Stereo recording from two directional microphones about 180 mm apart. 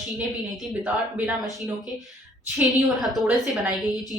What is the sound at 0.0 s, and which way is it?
A woman's voice, centre (ahead or behind).